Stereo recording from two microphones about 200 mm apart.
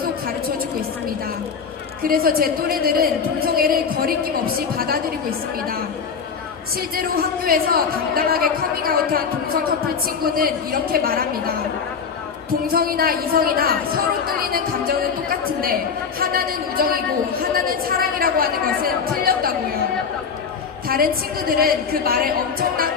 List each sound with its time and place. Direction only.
2.0 s a woman's voice: 45° right (ahead or behind)
6.7 s a woman's voice: 45° right (ahead or behind)
12.6 s a woman's voice: 50° right (ahead or behind)
20.8 s a woman's voice: 50° right (ahead or behind)